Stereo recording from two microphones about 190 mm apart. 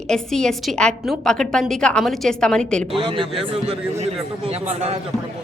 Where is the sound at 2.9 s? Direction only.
25° right (ahead or behind).